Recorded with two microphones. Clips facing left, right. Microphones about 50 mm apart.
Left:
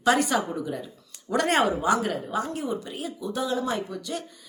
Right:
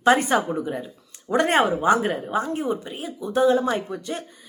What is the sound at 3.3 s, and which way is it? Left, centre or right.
Speech, right.